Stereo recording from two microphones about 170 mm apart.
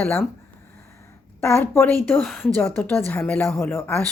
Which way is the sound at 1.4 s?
15° left (ahead or behind).